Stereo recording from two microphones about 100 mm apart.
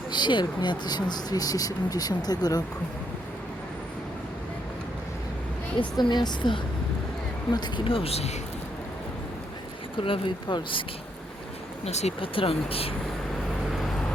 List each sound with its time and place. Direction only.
0.1 s speech: 50° left (ahead or behind)
6.0 s speech: 45° left (ahead or behind)
7.9 s speech: 70° left (ahead or behind); by 8.4 s 90° left
10.0 s speech: 60° left (ahead or behind)
11.9 s speech: 90° left; by 12.9 s 70° left (ahead or behind)